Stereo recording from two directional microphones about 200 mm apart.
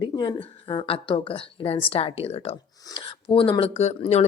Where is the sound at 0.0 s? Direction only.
25° left (ahead or behind).